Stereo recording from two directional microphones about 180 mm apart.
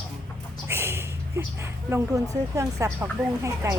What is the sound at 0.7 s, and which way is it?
Speech, 10° right (ahead or behind).